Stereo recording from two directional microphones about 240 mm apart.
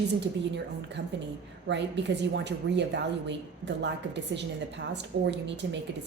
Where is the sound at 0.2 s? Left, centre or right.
Right.